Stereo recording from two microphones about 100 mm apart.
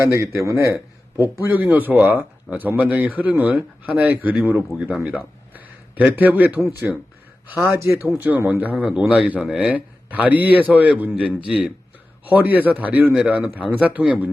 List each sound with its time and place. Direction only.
0.1 s a man's voice: 30° right (ahead or behind)
6.6 s a man's voice: 25° right (ahead or behind)
8.7 s a man's voice: 10° right (ahead or behind)